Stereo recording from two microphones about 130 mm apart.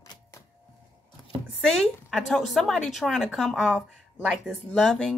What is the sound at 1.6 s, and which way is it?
A woman's voice, centre (ahead or behind).